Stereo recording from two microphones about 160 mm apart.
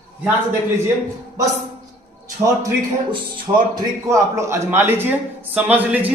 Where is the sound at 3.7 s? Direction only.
20° right (ahead or behind).